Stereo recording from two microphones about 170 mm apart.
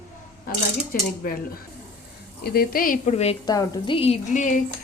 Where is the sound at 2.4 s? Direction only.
65° left (ahead or behind); by 3.4 s 40° left (ahead or behind).